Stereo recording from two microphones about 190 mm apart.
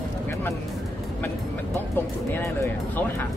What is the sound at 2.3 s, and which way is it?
Speech, 15° left (ahead or behind).